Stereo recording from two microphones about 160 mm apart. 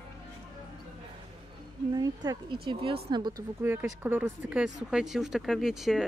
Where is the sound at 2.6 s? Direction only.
35° right (ahead or behind).